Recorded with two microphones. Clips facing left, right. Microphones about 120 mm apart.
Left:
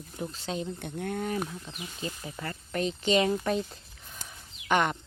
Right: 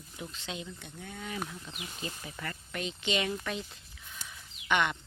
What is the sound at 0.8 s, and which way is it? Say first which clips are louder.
Speech: left 11 dB; 60° left (ahead or behind).